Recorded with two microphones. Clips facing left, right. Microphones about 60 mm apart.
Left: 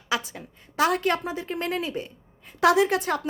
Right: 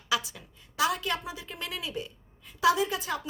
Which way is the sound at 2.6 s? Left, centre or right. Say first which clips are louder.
Left 5 dB; left.